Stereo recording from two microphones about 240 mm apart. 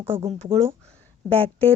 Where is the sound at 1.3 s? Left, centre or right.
Centre.